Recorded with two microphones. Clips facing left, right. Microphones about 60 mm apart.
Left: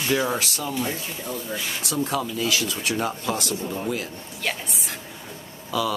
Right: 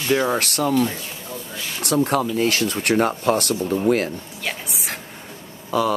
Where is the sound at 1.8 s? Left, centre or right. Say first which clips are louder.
Right 8 dB; right.